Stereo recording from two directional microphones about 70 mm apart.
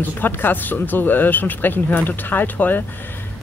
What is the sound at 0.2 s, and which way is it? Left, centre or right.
Speech, left.